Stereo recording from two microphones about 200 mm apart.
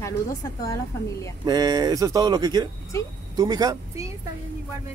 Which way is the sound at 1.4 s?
20° right (ahead or behind).